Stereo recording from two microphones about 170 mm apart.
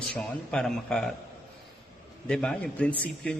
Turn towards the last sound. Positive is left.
turn(degrees=5)  # may be behind; listen again after turning